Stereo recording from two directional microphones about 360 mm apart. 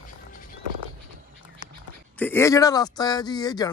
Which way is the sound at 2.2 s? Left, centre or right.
Centre.